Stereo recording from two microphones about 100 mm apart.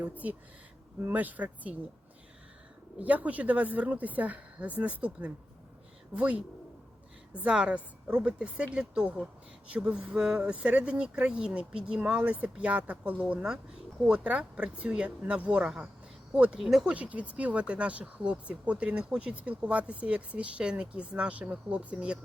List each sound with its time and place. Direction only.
0.0 s speech: 15° right (ahead or behind)
3.0 s speech: 15° right (ahead or behind)
7.3 s speech: 10° right (ahead or behind)
16.9 s speech: 15° right (ahead or behind)